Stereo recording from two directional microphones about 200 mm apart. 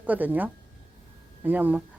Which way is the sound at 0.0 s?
10° right (ahead or behind).